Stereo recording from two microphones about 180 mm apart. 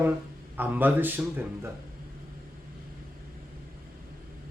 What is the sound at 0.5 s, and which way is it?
Speech, 10° right (ahead or behind).